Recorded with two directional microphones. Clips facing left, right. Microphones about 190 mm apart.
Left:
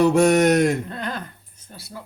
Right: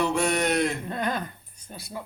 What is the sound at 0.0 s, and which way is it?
Speech, 45° left (ahead or behind).